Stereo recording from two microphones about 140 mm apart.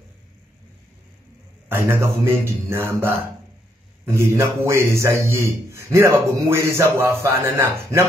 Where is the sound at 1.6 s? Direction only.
15° right (ahead or behind).